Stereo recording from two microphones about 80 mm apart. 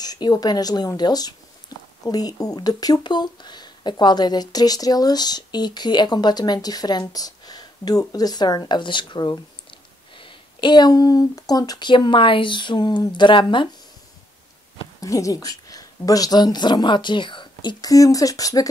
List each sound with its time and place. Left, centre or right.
0.0 s speech: left
3.0 s speech: left
11.9 s speech: left
13.1 s speech: left
15.0 s a woman's voice: left
17.8 s speech: left